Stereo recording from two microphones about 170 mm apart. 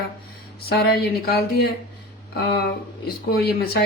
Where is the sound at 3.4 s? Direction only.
65° left (ahead or behind).